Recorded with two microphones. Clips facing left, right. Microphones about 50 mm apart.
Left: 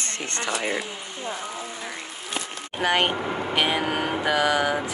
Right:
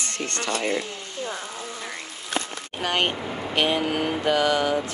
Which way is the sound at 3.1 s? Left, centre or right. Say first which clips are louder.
Left 3 dB; left.